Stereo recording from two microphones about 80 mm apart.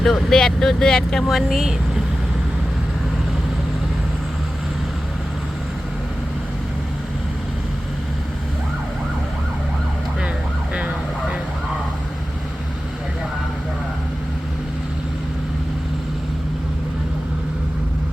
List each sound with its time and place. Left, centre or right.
0.0 s speech: centre
10.8 s vehicle: centre